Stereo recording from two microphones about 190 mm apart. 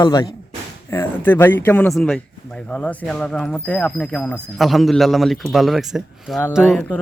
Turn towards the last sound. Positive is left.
turn(degrees=-5)  # may be behind; listen again after turning